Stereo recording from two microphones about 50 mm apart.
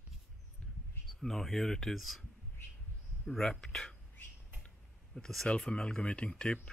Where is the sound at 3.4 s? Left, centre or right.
Centre.